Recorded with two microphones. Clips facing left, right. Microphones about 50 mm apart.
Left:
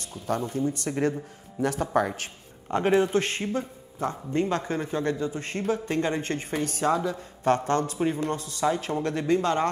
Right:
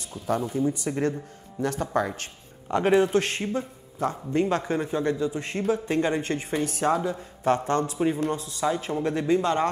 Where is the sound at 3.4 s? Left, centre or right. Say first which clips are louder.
Even; centre.